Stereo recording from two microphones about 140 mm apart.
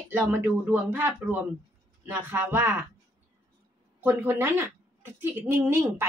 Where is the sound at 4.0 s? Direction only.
15° right (ahead or behind).